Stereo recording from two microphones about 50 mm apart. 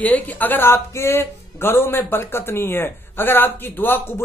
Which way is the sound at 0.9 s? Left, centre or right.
Left.